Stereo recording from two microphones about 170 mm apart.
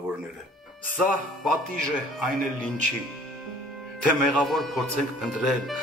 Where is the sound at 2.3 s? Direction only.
50° right (ahead or behind).